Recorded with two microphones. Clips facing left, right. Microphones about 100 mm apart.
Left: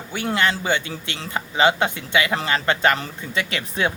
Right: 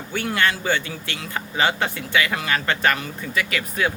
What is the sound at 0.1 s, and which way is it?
Speech, 20° left (ahead or behind).